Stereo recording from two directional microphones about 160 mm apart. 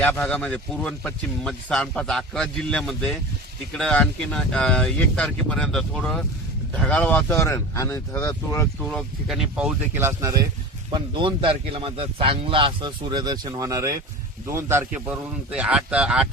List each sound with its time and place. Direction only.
0.0 s speech: 5° left (ahead or behind)
8.8 s speech: 5° left (ahead or behind); by 10.3 s 20° right (ahead or behind)
10.9 s a man's voice: 30° right (ahead or behind); by 16.2 s 5° right (ahead or behind)